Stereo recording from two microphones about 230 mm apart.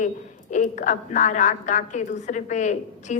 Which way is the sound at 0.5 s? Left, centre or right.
Left.